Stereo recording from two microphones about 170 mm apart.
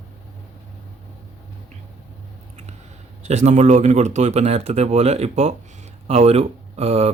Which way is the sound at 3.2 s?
40° right (ahead or behind).